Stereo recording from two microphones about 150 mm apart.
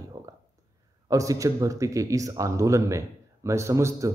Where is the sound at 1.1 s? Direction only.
20° right (ahead or behind).